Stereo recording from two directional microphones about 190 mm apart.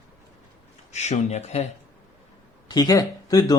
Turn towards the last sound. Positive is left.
turn(degrees=20)  # may be behind; listen again after turning